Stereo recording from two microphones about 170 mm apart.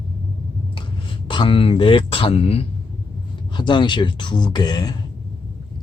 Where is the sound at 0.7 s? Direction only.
30° left (ahead or behind).